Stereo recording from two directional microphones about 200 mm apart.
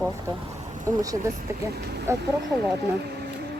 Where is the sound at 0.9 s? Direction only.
15° right (ahead or behind).